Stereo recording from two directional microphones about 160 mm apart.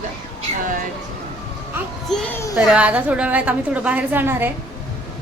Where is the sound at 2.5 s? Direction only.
5° right (ahead or behind).